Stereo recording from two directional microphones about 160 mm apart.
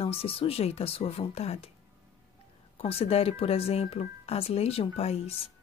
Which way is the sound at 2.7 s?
40° left (ahead or behind).